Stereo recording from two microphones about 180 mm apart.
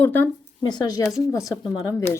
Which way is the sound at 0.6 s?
20° left (ahead or behind).